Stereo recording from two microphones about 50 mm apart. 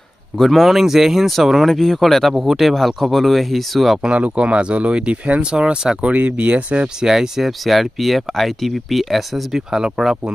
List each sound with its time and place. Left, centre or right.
0.4 s speech: centre
4.0 s speech: right
5.4 s speech: centre
7.1 s speech: centre